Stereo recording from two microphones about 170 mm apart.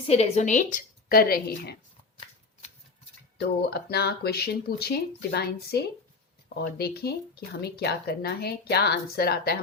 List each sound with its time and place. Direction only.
0.1 s a woman's voice: 40° left (ahead or behind); by 1.7 s 65° left (ahead or behind)
3.4 s speech: 70° left (ahead or behind)